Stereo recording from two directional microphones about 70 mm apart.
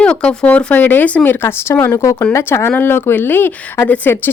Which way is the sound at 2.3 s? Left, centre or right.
Left.